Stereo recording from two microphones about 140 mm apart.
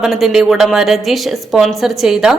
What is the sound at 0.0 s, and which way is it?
A woman's voice, centre (ahead or behind).